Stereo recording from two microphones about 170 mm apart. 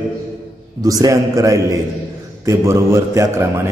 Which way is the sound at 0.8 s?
20° right (ahead or behind).